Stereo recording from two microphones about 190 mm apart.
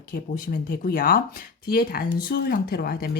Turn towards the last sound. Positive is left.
turn(degrees=55)  # may be behind; listen again after turning